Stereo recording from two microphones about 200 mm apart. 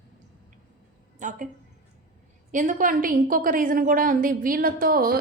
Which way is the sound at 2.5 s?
40° right (ahead or behind).